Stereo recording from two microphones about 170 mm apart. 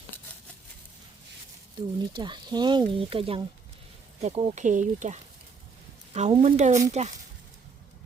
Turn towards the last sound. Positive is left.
turn(degrees=-40)  # may be behind; listen again after turning